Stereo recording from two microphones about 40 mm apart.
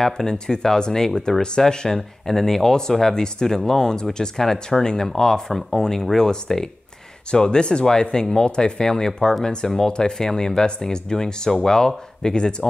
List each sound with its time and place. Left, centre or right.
0.0 s speech: centre